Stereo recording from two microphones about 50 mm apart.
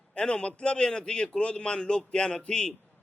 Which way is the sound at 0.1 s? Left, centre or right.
Centre.